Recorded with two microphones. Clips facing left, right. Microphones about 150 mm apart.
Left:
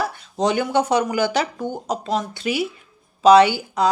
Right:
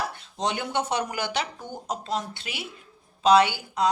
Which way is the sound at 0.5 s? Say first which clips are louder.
Left 9 dB; 90° left.